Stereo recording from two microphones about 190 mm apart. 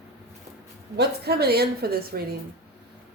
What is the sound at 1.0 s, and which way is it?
Speech, 55° right (ahead or behind).